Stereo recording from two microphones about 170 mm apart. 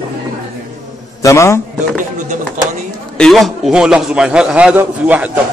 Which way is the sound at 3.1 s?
Centre (ahead or behind).